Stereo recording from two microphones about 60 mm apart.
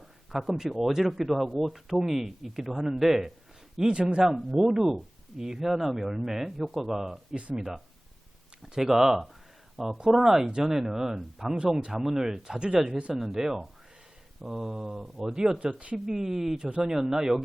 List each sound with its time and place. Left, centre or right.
0.3 s speech: centre
7.3 s speech: centre
8.6 s speech: centre
16.0 s speech: centre